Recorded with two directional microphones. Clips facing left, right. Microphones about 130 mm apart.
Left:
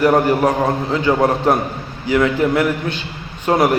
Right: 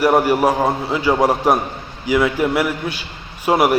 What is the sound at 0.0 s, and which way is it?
A man's voice, 10° right (ahead or behind).